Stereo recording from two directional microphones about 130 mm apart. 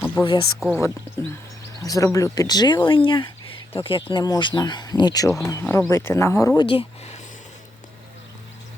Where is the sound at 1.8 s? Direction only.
25° left (ahead or behind); by 4.2 s 45° left (ahead or behind).